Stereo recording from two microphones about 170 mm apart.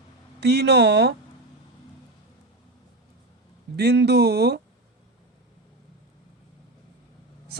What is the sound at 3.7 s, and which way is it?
Speech, 75° right (ahead or behind).